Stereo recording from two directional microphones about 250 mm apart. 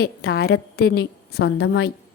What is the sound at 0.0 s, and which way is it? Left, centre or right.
A woman's voice, left.